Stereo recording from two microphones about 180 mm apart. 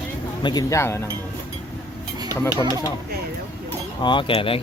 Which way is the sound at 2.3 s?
15° left (ahead or behind).